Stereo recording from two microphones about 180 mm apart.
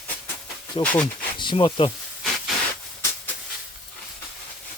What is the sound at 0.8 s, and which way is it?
Speech, 30° left (ahead or behind).